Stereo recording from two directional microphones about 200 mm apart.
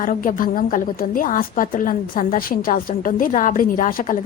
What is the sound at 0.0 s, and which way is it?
A woman's voice, 45° left (ahead or behind).